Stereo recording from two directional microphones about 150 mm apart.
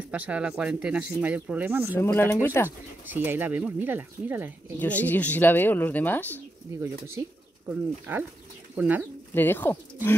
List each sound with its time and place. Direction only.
0.1 s speech: 10° right (ahead or behind)
2.0 s speech: 20° left (ahead or behind)
3.1 s speech: 10° right (ahead or behind)
4.7 s speech: 10° left (ahead or behind)
6.8 s speech: 15° right (ahead or behind)
9.3 s speech: 15° left (ahead or behind)